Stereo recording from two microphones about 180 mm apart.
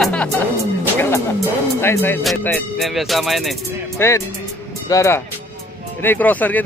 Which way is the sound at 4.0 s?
15° left (ahead or behind).